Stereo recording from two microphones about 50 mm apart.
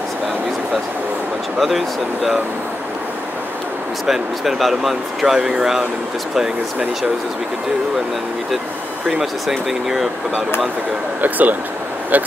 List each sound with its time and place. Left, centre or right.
1.6 s speech: centre
4.0 s speech: centre
9.5 s speech: centre
11.1 s speech: right